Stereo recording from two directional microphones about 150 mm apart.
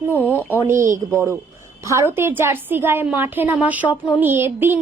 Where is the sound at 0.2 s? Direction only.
10° right (ahead or behind).